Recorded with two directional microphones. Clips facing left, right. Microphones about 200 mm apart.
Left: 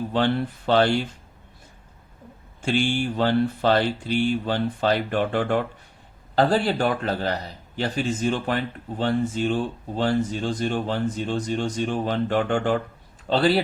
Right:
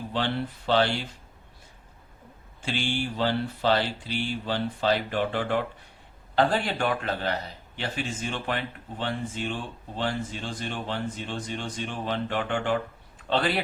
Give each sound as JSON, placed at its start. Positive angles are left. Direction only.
{"t": 0.1, "sound": "speech", "side_deg": 50}
{"t": 2.6, "sound": "speech", "side_deg": 50}
{"t": 6.3, "sound": "speech", "side_deg": 35}